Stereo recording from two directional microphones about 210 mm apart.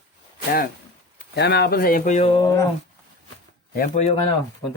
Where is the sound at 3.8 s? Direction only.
35° left (ahead or behind).